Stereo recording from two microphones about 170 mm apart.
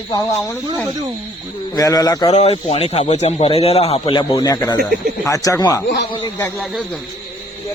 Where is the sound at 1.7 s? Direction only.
20° left (ahead or behind).